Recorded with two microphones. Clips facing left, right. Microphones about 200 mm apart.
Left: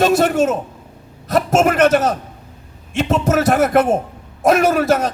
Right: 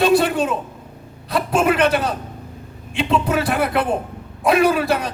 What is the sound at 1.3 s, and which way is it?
A man's voice, 45° left (ahead or behind).